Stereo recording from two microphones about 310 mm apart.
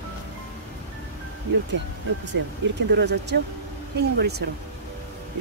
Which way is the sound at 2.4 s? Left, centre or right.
Right.